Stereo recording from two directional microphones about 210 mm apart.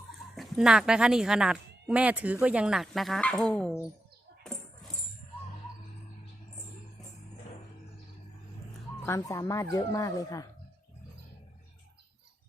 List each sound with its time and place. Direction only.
0.3 s speech: centre (ahead or behind)
4.4 s coin: 5° left (ahead or behind)
9.0 s speech: 15° left (ahead or behind)